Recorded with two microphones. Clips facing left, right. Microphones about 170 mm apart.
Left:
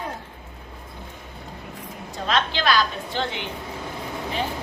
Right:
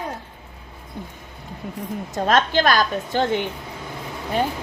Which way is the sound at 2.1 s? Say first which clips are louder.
Right 6 dB; 45° right (ahead or behind).